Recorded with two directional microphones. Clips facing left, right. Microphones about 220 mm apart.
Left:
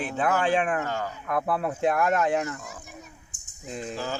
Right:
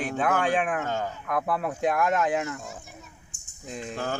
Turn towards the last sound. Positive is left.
turn(degrees=0)  # may be behind; listen again after turning